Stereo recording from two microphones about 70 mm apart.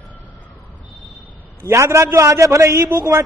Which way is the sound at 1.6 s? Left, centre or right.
Right.